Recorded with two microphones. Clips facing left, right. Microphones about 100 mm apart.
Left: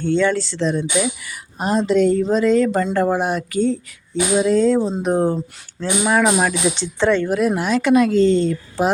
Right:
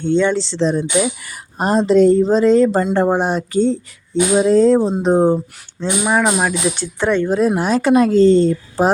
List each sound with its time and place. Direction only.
0.0 s speech: 20° right (ahead or behind)
6.1 s speech: 5° right (ahead or behind)
7.3 s speech: 30° right (ahead or behind)